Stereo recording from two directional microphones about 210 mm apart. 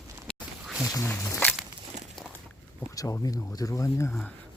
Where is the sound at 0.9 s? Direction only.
10° left (ahead or behind).